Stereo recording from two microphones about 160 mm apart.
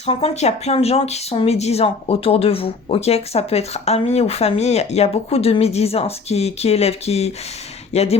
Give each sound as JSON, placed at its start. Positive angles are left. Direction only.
{"t": 0.0, "sound": "speech", "side_deg": 40}